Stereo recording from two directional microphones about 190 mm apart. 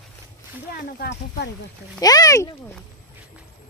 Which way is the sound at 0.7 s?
60° left (ahead or behind).